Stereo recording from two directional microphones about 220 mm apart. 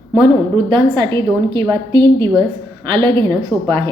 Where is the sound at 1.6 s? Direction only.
20° right (ahead or behind).